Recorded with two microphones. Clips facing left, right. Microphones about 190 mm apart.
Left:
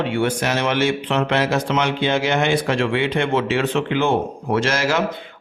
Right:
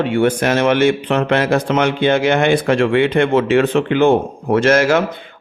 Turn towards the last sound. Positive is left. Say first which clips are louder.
# right 7 dB
turn(degrees=-55)  # may be behind; listen again after turning